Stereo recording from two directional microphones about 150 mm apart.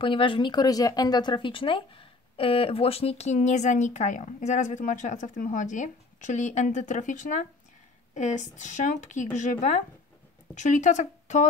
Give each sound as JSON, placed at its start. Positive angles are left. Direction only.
{"t": 0.0, "sound": "speech", "side_deg": 35}